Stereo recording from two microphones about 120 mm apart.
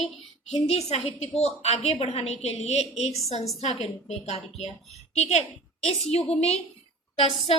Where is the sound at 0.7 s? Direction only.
60° left (ahead or behind).